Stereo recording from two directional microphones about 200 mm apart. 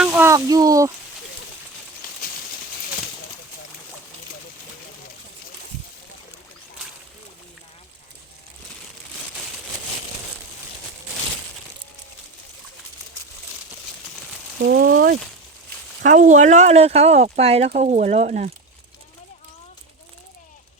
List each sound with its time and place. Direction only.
0.0 s a sound: 5° right (ahead or behind)
14.6 s mechanisms: 50° right (ahead or behind)
16.0 s speech: 40° right (ahead or behind)